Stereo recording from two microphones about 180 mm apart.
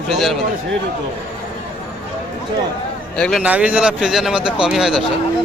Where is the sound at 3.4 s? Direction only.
5° right (ahead or behind).